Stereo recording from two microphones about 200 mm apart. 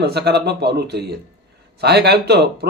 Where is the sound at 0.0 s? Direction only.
55° right (ahead or behind).